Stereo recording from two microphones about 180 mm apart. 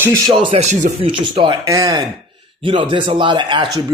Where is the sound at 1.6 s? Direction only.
20° right (ahead or behind).